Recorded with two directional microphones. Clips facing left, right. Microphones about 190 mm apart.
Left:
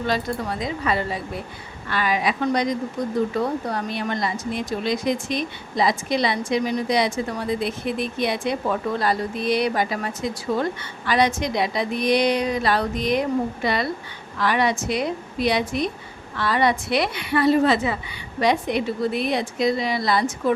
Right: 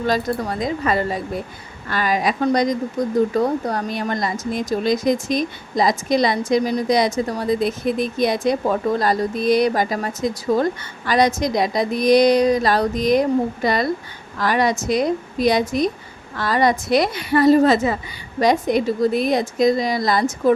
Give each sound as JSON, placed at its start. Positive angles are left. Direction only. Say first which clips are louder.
{"t": 0.1, "sound": "a woman's voice", "louder": "right 4 dB", "side_deg": -45}